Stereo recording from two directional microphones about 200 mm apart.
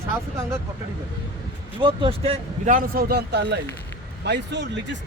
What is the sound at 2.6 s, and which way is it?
A man's voice, 45° right (ahead or behind).